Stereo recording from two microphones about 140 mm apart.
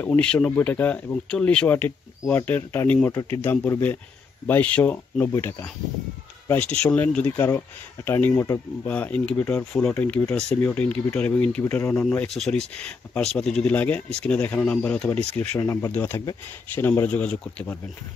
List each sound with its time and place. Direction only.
0.0 s speech: 10° left (ahead or behind)
6.6 s speech: 5° left (ahead or behind)
12.4 s speech: 5° left (ahead or behind)
15.6 s speech: 20° left (ahead or behind)